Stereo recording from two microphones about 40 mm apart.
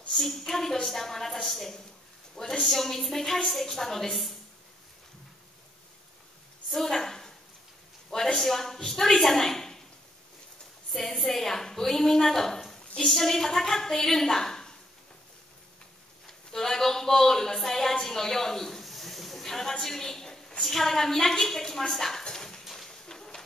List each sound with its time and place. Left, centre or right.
0.1 s a woman's voice: centre
6.7 s a woman's voice: centre
8.4 s a woman's voice: centre
10.9 s a woman's voice: centre
16.5 s a woman's voice: centre
22.2 s dog: centre
23.0 s a sound: centre